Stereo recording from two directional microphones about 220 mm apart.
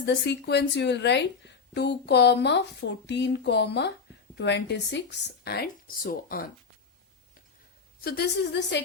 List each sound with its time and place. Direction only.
0.0 s a woman's voice: 50° left (ahead or behind)
8.0 s a woman's voice: 45° left (ahead or behind)